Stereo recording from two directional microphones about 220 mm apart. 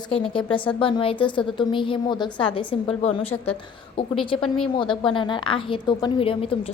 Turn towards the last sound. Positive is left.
turn(degrees=25)  # may be behind; listen again after turning